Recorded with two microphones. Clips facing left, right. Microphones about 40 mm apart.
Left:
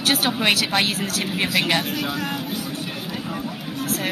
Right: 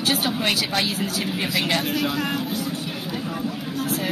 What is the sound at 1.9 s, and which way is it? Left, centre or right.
Speech, centre.